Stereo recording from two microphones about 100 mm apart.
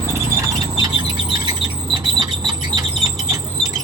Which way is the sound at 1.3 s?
50° right (ahead or behind).